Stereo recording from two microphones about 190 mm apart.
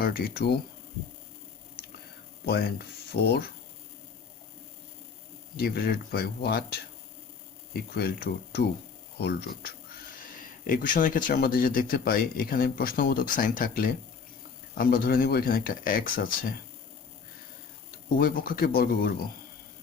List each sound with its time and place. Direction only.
0.0 s speech: 55° left (ahead or behind)
2.5 s speech: 55° left (ahead or behind)
5.5 s speech: 55° left (ahead or behind)
10.6 s speech: 45° left (ahead or behind)
18.2 s speech: 50° left (ahead or behind)